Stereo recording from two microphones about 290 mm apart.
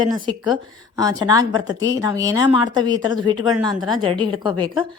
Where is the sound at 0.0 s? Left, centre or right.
Centre.